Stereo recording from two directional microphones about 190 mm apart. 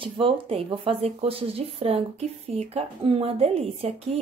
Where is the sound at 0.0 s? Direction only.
30° right (ahead or behind).